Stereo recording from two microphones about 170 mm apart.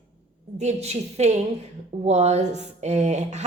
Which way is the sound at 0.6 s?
40° right (ahead or behind).